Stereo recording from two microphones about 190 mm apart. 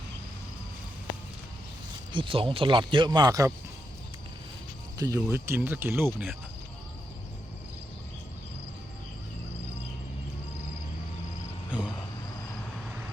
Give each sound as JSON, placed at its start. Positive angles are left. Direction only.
{"t": 2.1, "sound": "speech", "side_deg": -25}
{"t": 4.9, "sound": "speech", "side_deg": -15}